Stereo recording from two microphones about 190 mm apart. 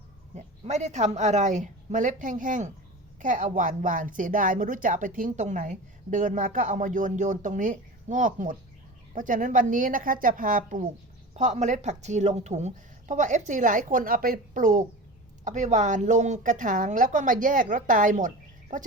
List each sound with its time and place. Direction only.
0.3 s a woman's voice: 35° right (ahead or behind)